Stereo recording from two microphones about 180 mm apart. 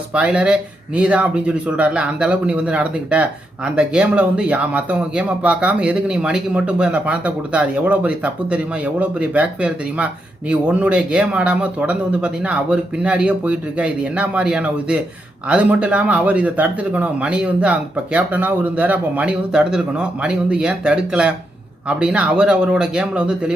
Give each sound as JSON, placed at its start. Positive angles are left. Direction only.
{"t": 0.1, "sound": "a man's voice", "side_deg": -5}